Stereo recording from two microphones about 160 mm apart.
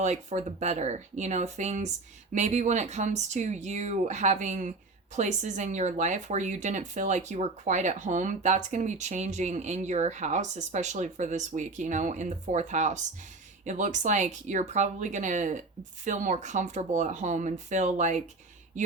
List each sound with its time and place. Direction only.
0.0 s speech: 45° right (ahead or behind)